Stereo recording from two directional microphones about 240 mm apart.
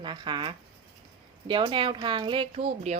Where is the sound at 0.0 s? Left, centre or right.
Right.